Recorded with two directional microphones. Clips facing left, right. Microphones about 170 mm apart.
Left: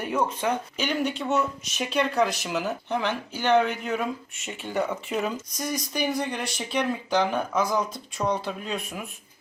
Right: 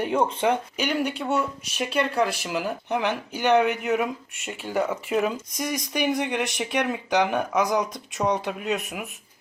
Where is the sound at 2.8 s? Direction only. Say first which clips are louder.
Right 2 dB; 15° right (ahead or behind).